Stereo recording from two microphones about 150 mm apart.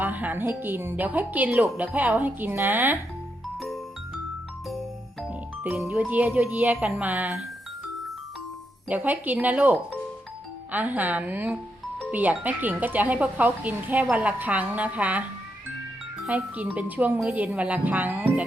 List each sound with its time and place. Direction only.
0.0 s speech: 10° right (ahead or behind)
3.6 s music: centre (ahead or behind)
5.2 s speech: centre (ahead or behind)
8.9 s speech: 10° right (ahead or behind)
16.2 s speech: 5° right (ahead or behind)